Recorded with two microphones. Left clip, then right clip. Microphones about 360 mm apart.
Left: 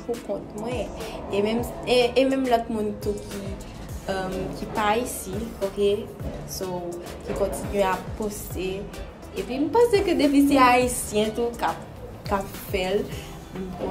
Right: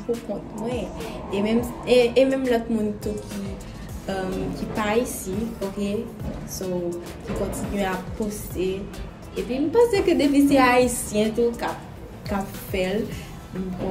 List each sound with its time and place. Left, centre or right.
0.1 s a woman's voice: centre
7.5 s a woman's voice: centre